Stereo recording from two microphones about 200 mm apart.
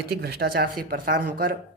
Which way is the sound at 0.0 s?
50° right (ahead or behind).